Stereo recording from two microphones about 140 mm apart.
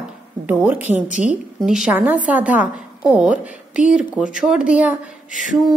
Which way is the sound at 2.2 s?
10° right (ahead or behind).